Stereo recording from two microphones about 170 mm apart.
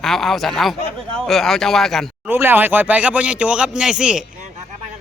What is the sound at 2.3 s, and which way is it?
Speech, 10° right (ahead or behind).